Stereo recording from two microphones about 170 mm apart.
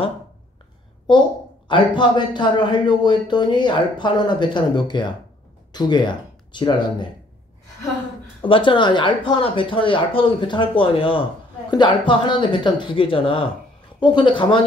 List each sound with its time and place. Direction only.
1.7 s speech: 25° left (ahead or behind)
8.4 s speech: 30° left (ahead or behind)